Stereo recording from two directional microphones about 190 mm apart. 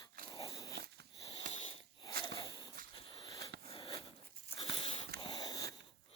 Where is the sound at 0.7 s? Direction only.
60° right (ahead or behind).